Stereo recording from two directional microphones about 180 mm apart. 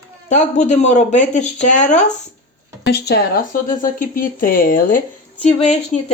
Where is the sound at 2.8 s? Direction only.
65° left (ahead or behind).